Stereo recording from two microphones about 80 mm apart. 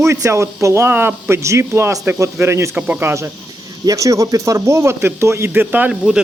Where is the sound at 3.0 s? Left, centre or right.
Right.